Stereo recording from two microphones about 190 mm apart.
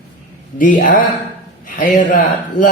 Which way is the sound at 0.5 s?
45° left (ahead or behind).